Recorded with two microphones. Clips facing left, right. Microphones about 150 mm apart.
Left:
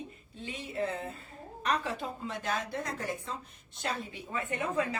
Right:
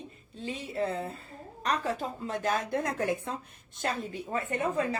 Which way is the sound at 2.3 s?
45° right (ahead or behind).